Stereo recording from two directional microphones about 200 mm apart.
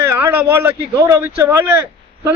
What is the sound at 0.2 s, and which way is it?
Speech, 10° right (ahead or behind).